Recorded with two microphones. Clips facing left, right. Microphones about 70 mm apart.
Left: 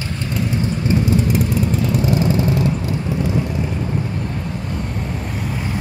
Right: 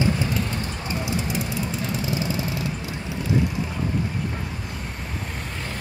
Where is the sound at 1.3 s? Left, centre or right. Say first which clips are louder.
Left 8 dB; left.